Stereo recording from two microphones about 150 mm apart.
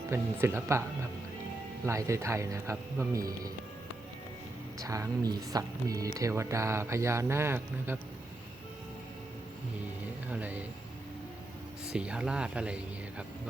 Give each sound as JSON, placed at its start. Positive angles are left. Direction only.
{"t": 0.1, "sound": "speech", "side_deg": -15}
{"t": 1.9, "sound": "speech", "side_deg": -20}
{"t": 4.8, "sound": "speech", "side_deg": -20}
{"t": 10.2, "sound": "speech", "side_deg": -10}
{"t": 11.9, "sound": "speech", "side_deg": -5}